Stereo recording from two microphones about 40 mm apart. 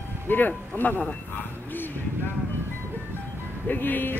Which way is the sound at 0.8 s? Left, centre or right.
Left.